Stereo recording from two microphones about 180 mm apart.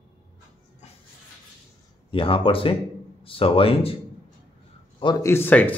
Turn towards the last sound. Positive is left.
turn(degrees=10)  # may be behind; listen again after turning